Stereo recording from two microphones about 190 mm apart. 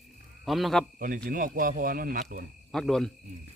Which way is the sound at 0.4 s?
Centre (ahead or behind).